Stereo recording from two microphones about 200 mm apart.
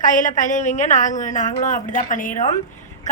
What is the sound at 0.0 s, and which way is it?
A woman's voice, 40° left (ahead or behind).